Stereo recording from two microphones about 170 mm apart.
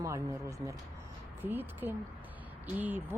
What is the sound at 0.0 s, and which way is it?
Speech, 15° right (ahead or behind).